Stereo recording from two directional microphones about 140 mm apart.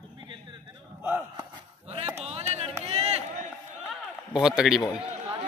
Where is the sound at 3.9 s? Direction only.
5° right (ahead or behind).